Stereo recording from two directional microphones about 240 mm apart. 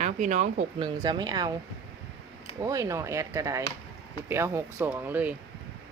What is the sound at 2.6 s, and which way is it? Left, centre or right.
Speech, centre.